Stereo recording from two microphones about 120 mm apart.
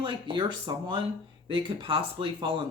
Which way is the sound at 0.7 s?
35° right (ahead or behind).